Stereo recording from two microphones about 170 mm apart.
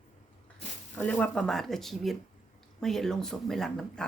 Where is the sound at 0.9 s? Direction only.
10° left (ahead or behind).